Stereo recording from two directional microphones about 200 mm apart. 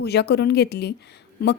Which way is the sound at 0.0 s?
55° left (ahead or behind).